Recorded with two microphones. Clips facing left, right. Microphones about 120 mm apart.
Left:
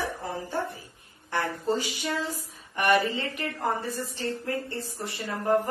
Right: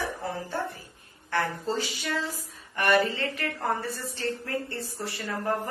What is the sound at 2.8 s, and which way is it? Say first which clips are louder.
A woman's voice: even; 15° left (ahead or behind).